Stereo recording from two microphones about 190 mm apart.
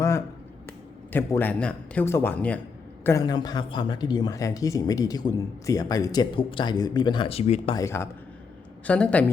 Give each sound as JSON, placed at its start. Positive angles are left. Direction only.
{"t": 1.1, "sound": "a man's voice", "side_deg": 10}
{"t": 7.8, "sound": "a man's voice", "side_deg": 15}